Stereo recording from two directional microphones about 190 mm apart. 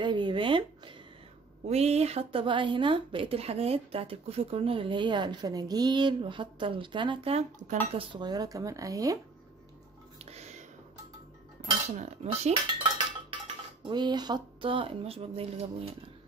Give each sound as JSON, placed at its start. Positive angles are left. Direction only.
{"t": 0.0, "sound": "a woman's voice", "side_deg": -25}
{"t": 10.3, "sound": "a sound", "side_deg": -35}
{"t": 12.0, "sound": "cutlery", "side_deg": -35}
{"t": 13.8, "sound": "a woman's voice", "side_deg": -25}